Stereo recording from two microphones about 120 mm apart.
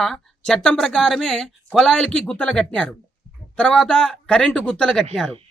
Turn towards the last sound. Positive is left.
turn(degrees=5)  # may be behind; listen again after turning